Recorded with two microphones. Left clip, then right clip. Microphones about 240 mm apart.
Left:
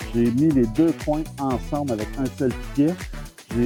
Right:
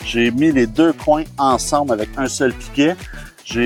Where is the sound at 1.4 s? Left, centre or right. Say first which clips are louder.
Right 10 dB; right.